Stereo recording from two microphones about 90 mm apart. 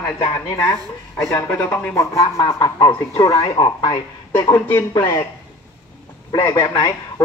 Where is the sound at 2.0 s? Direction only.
35° left (ahead or behind).